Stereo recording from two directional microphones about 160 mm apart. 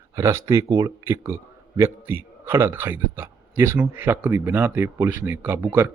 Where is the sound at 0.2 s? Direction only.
15° right (ahead or behind).